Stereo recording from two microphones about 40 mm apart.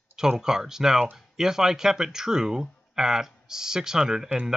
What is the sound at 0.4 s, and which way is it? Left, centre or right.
Speech, centre.